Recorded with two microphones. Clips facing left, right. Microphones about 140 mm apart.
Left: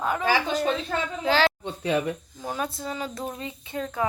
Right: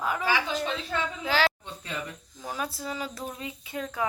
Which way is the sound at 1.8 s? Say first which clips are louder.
Left 12 dB; 70° left (ahead or behind).